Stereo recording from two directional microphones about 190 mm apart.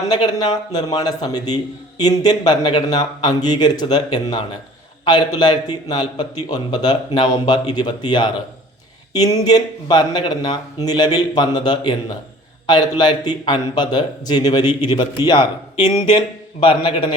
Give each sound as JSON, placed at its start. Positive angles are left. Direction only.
{"t": 0.1, "sound": "a man's voice", "side_deg": 20}
{"t": 14.6, "sound": "a man's voice", "side_deg": -10}
{"t": 16.0, "sound": "a man's voice", "side_deg": 25}